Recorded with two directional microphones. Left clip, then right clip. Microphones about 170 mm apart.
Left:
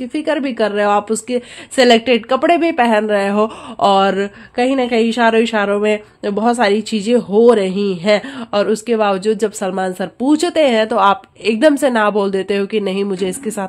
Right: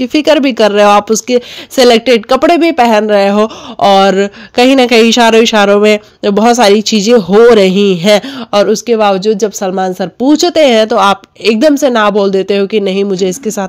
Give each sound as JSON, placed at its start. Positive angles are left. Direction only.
{"t": 0.0, "sound": "speech", "side_deg": -50}
{"t": 4.6, "sound": "speech", "side_deg": -45}